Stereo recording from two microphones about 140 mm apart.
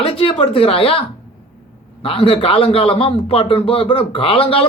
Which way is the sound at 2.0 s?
40° left (ahead or behind).